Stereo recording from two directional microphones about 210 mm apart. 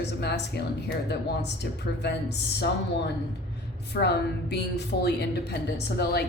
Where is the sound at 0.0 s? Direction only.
55° left (ahead or behind).